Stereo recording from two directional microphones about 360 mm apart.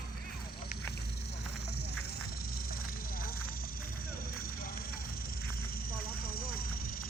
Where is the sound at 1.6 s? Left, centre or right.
Left.